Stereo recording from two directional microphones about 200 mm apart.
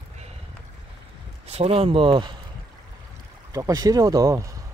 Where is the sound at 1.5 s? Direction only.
30° right (ahead or behind).